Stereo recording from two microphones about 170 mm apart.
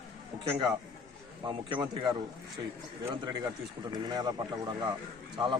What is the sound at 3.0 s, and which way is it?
Speech, 20° right (ahead or behind).